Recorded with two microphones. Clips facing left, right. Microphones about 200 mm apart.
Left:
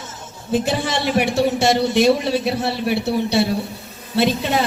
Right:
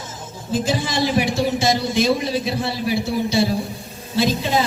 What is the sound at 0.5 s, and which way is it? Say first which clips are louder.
A man's voice: left 1 dB; 65° left (ahead or behind).